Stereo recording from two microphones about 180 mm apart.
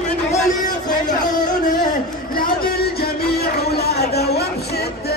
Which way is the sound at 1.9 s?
55° left (ahead or behind).